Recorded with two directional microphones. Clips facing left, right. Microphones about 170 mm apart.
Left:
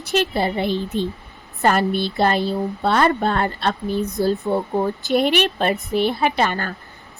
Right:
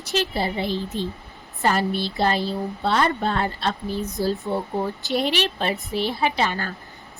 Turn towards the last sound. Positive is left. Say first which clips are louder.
# left 3 dB
turn(degrees=55)  # may be behind; listen again after turning